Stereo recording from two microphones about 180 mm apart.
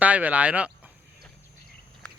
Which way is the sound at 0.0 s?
10° right (ahead or behind).